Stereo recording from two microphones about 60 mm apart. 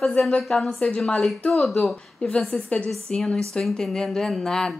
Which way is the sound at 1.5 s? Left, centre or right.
Centre.